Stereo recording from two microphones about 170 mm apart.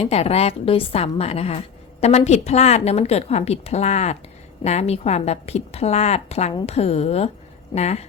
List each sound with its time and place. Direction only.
0.0 s a woman's voice: 35° left (ahead or behind)